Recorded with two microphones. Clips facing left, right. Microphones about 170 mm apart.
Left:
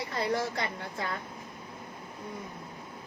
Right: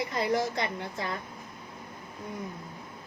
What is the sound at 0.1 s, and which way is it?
A man's voice, 20° right (ahead or behind).